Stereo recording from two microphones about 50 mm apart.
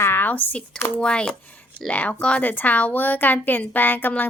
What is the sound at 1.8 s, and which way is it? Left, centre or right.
A woman's voice, left.